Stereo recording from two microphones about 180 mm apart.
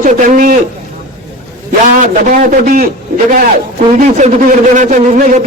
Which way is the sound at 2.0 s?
45° right (ahead or behind).